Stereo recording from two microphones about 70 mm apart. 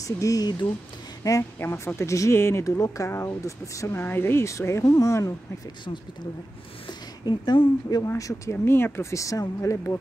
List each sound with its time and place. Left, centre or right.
0.0 s speech: left
1.6 s speech: left
2.6 s speech: left
4.0 s speech: left
4.5 s speech: left
4.8 s speech: left
6.9 s speech: left
8.2 s speech: left
8.6 s speech: left